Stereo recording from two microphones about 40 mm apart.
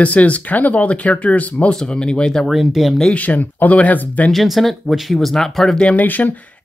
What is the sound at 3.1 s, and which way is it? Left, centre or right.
Speech, left.